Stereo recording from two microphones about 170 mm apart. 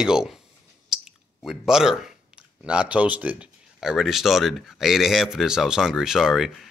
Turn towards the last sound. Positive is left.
turn(degrees=0)  # may be behind; listen again after turning